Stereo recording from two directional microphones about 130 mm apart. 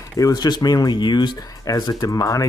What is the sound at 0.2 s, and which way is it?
Speech, 30° left (ahead or behind).